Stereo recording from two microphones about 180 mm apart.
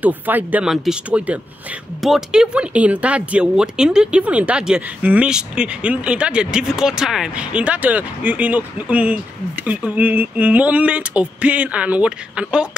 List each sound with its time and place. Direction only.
0.0 s speech: 10° right (ahead or behind)